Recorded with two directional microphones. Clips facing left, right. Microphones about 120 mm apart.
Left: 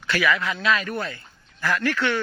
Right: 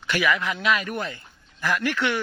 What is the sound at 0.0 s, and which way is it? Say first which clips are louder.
Speech: left 1 dB; 15° right (ahead or behind).